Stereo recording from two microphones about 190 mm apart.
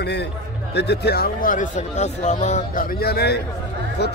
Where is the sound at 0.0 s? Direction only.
60° left (ahead or behind).